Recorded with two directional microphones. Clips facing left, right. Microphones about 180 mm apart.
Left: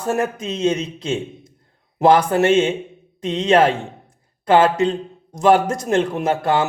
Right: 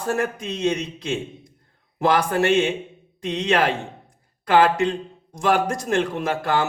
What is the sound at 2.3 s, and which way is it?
Speech, 20° left (ahead or behind).